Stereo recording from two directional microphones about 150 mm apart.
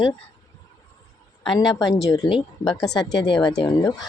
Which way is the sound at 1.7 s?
25° left (ahead or behind).